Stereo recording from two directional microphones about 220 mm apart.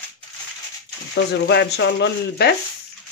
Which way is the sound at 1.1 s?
50° left (ahead or behind).